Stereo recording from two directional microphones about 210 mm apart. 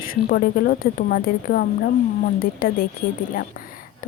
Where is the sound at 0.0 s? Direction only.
45° left (ahead or behind).